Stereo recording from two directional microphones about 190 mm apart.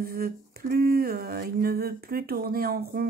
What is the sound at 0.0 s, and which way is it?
Humming, 50° right (ahead or behind).